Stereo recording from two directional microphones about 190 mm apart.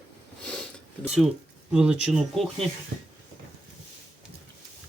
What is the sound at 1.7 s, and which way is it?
Speech, 5° right (ahead or behind).